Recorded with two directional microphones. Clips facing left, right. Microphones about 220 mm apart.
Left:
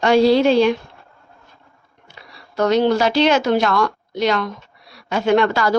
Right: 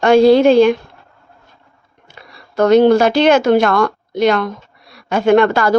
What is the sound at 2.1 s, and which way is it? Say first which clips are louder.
A woman's voice: right 3 dB; 50° right (ahead or behind).